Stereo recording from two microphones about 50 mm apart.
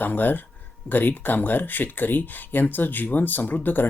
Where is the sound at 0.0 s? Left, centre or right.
Left.